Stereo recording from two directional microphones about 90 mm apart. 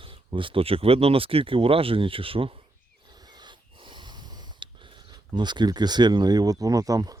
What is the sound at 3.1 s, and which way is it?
Snort, 50° right (ahead or behind).